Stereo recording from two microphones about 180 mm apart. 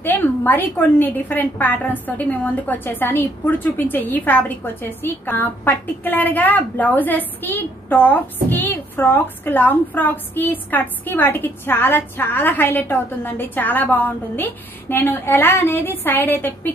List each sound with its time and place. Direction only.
0.0 s a woman's voice: 10° left (ahead or behind)